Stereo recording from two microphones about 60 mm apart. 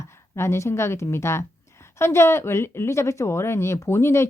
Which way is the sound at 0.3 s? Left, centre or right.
Left.